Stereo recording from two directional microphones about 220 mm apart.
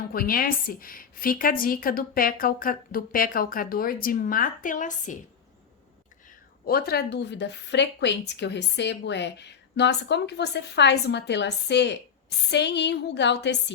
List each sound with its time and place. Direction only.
0.1 s a woman's voice: 40° left (ahead or behind)
6.7 s a woman's voice: 45° left (ahead or behind)